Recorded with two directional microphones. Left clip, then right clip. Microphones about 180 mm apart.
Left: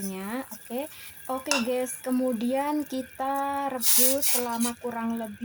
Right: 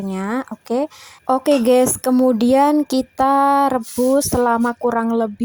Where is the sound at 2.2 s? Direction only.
40° right (ahead or behind).